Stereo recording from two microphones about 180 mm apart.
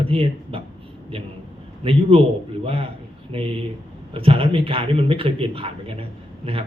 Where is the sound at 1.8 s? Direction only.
30° right (ahead or behind).